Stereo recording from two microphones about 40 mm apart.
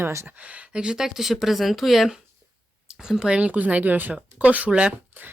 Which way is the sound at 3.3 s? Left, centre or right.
Right.